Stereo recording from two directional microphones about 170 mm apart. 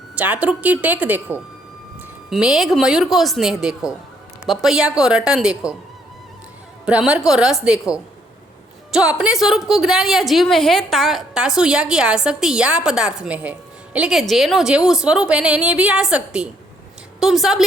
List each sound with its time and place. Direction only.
0.2 s a woman's voice: 10° right (ahead or behind)
6.8 s a woman's voice: 5° right (ahead or behind)